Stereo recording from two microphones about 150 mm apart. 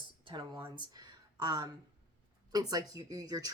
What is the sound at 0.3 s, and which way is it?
Speech, 30° right (ahead or behind).